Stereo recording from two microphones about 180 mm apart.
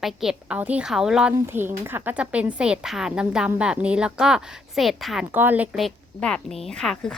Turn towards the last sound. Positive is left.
turn(degrees=5)  # may be behind; listen again after turning